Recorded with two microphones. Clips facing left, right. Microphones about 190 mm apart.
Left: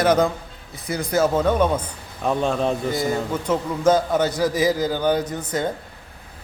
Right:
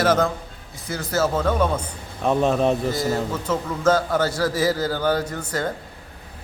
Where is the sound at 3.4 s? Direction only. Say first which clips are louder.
Left 3 dB; 15° left (ahead or behind).